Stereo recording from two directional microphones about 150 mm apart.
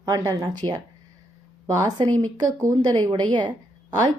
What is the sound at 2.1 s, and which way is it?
A woman's voice, 25° right (ahead or behind).